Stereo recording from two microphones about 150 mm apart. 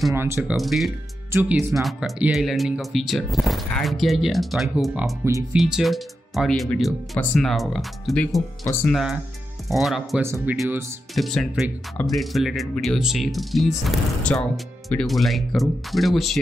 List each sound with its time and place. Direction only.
0.1 s speech: 15° right (ahead or behind)
0.6 s speech: centre (ahead or behind)
1.3 s speech: 15° right (ahead or behind)
1.8 s speech: centre (ahead or behind)
10.2 s speech: 15° right (ahead or behind)
11.1 s speech: centre (ahead or behind)